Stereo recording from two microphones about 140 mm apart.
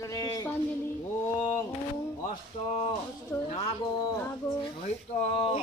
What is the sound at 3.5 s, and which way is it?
Speech, 40° left (ahead or behind).